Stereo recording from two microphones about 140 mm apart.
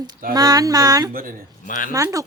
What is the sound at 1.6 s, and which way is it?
Speech, 70° left (ahead or behind).